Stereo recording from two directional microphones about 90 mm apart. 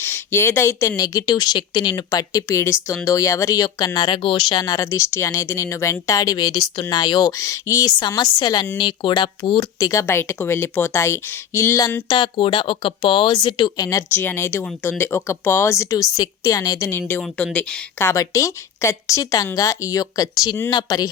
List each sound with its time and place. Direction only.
0.0 s speech: 25° left (ahead or behind); by 7.3 s 50° left (ahead or behind)
7.3 s speech: 35° left (ahead or behind)
7.9 s speech: 55° left (ahead or behind)
9.9 s speech: 35° left (ahead or behind)
12.0 s speech: 60° left (ahead or behind); by 14.0 s 45° left (ahead or behind)
14.1 s speech: 25° left (ahead or behind); by 16.9 s 40° left (ahead or behind)
16.9 s speech: 25° left (ahead or behind)
17.3 s speech: 15° left (ahead or behind)
18.0 s speech: 35° left (ahead or behind)